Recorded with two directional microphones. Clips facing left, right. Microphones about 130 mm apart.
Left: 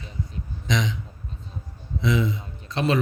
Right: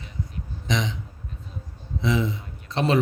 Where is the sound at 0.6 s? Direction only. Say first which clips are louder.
Left 1 dB; 25° right (ahead or behind).